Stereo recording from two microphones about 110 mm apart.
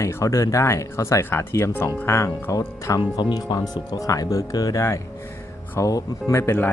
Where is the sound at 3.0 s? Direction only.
40° left (ahead or behind).